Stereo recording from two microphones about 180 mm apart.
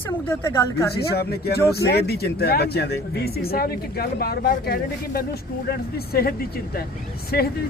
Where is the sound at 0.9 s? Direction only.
60° left (ahead or behind).